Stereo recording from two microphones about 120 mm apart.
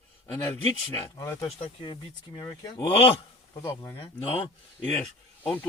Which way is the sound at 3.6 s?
25° left (ahead or behind).